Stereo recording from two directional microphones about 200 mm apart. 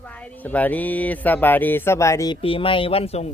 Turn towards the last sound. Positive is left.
turn(degrees=30)  # may be behind; listen again after turning